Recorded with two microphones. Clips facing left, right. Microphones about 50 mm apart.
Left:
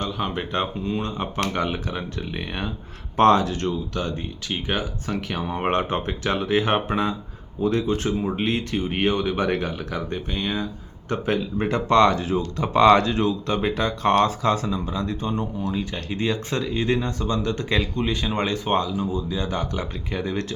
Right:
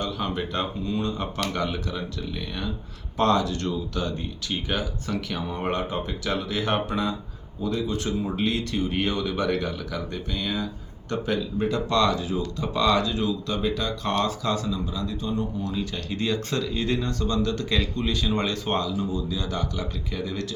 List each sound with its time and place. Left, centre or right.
0.1 s speech: left
3.6 s speech: left
5.6 s speech: left
6.2 s speech: left
7.8 s speech: left
8.4 s speech: left
15.6 s speech: left